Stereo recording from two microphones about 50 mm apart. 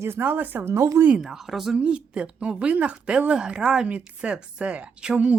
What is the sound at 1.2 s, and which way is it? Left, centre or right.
Speech, centre.